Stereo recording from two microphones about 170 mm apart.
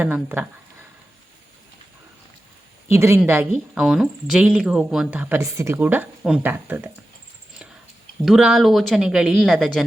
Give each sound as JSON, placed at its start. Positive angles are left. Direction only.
{"t": 0.0, "sound": "speech", "side_deg": -10}
{"t": 2.9, "sound": "speech", "side_deg": -15}
{"t": 3.8, "sound": "speech", "side_deg": -5}
{"t": 8.2, "sound": "speech", "side_deg": -5}